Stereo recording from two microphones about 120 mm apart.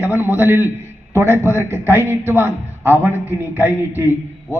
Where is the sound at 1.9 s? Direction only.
20° right (ahead or behind).